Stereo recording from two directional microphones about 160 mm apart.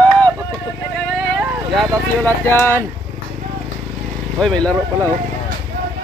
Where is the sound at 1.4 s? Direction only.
Centre (ahead or behind).